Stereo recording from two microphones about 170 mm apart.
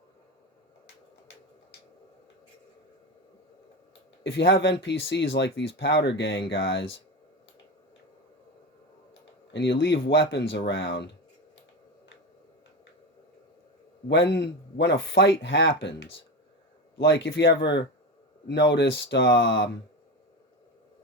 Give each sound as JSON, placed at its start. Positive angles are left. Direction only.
{"t": 4.2, "sound": "speech", "side_deg": 90}
{"t": 9.5, "sound": "speech", "side_deg": 90}
{"t": 14.1, "sound": "speech", "side_deg": 90}